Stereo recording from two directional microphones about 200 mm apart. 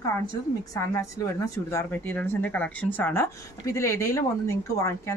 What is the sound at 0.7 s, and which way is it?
A woman's voice, 15° left (ahead or behind).